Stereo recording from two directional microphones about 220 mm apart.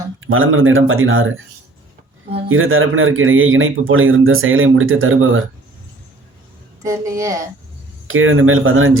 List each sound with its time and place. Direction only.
0.3 s speech: 65° right (ahead or behind)
2.5 s speech: 65° right (ahead or behind)
6.8 s a woman's voice: 15° right (ahead or behind)
8.0 s speech: 65° right (ahead or behind)